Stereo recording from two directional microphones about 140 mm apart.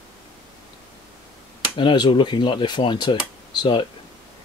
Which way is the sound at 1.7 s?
35° left (ahead or behind).